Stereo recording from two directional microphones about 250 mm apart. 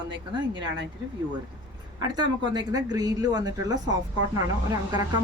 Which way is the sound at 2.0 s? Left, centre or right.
Centre.